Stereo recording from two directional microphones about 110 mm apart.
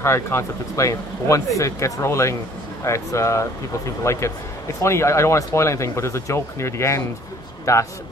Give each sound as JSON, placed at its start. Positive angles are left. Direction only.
{"t": 0.0, "sound": "speech", "side_deg": 25}